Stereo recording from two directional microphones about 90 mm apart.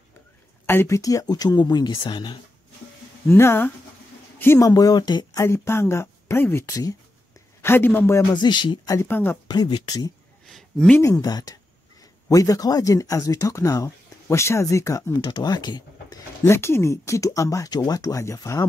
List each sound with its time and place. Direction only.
0.7 s speech: 30° left (ahead or behind); by 2.3 s 60° left (ahead or behind)
3.3 s speech: 30° left (ahead or behind)
4.6 s speech: 40° left (ahead or behind)
5.4 s speech: 30° left (ahead or behind)
6.7 s speech: 40° left (ahead or behind)
7.6 s speech: 25° left (ahead or behind)
8.4 s speech: 60° left (ahead or behind)
8.9 s speech: 25° left (ahead or behind)
9.5 s speech: 50° left (ahead or behind)
10.4 s a sound: 5° left (ahead or behind)
11.0 s speech: 40° left (ahead or behind)
13.8 s speech: 30° left (ahead or behind)
15.2 s speech: 50° left (ahead or behind)
16.4 s speech: 30° left (ahead or behind)